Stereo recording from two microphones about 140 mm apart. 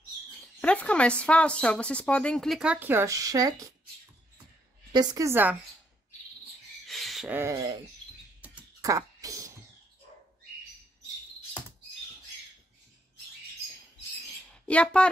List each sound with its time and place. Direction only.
0.6 s speech: 10° left (ahead or behind); by 3.7 s 25° right (ahead or behind)
4.9 s a woman's voice: 25° right (ahead or behind)
6.9 s a sound: centre (ahead or behind)
7.2 s a woman's voice: 15° right (ahead or behind)
8.8 s a sound: 25° right (ahead or behind)
14.5 s speech: 10° left (ahead or behind)